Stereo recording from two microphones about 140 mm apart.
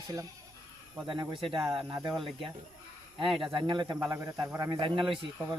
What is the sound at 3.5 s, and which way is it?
Speech, 35° right (ahead or behind).